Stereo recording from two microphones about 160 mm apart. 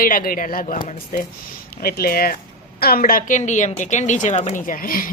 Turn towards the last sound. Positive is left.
turn(degrees=60)  # may be behind; listen again after turning